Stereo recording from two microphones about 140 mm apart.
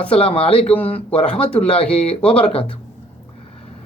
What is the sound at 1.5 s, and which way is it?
Speech, 45° left (ahead or behind).